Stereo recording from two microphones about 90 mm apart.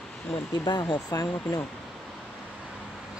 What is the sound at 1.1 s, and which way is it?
Speech, 45° left (ahead or behind).